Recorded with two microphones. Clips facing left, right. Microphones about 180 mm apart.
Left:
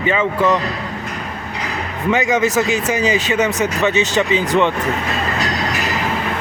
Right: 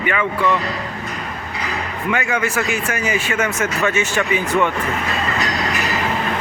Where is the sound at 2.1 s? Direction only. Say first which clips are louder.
Left 5 dB; 20° left (ahead or behind).